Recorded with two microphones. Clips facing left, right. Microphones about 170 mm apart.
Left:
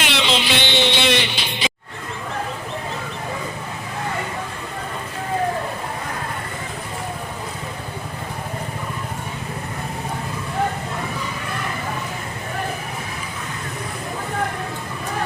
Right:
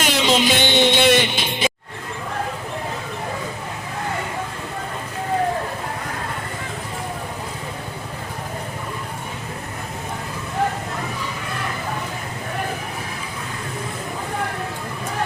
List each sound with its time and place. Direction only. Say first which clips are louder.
0.0 s music: right 3 dB; 45° right (ahead or behind)